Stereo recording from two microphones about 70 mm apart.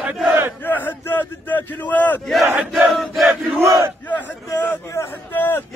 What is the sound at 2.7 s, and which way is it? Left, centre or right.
Battle cry, centre.